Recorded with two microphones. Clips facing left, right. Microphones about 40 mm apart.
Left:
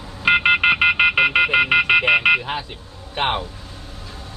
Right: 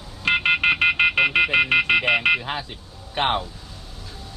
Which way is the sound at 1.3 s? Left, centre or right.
Centre.